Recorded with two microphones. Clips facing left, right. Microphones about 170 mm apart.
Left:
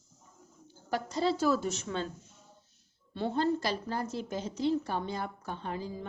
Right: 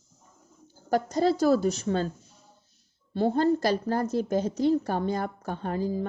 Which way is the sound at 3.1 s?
40° right (ahead or behind).